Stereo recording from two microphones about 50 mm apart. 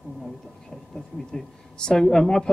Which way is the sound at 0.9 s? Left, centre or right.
Centre.